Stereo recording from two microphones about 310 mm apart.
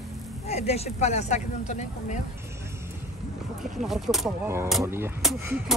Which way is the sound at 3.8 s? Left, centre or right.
Centre.